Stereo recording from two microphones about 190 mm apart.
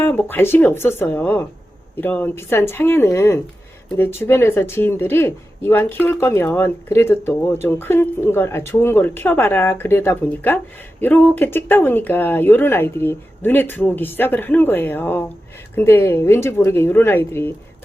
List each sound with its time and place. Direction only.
0.0 s speech: 10° left (ahead or behind)